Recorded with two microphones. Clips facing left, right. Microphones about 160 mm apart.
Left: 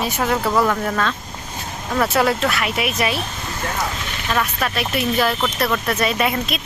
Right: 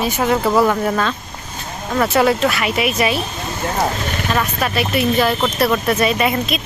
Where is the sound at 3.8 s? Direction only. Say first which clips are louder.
Right 6 dB; 50° right (ahead or behind).